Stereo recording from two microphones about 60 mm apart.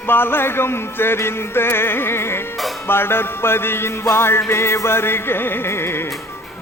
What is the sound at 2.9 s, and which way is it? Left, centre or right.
Music, left.